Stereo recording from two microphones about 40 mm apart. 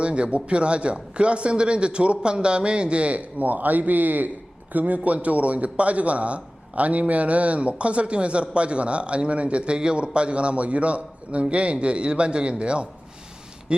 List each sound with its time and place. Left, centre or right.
0.0 s a man's voice: right